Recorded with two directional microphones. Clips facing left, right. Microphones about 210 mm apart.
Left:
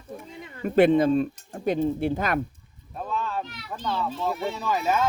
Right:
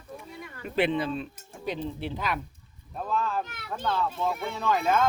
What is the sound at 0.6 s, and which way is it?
Speech, 45° left (ahead or behind).